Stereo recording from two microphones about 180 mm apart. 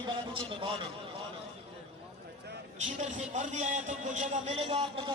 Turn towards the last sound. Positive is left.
turn(degrees=-30)  # may be behind; listen again after turning